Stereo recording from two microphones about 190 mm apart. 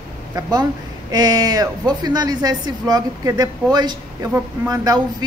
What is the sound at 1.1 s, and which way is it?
A woman's voice, 20° right (ahead or behind).